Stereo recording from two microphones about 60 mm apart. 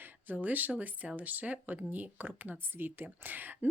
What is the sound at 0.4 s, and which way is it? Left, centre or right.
Speech, right.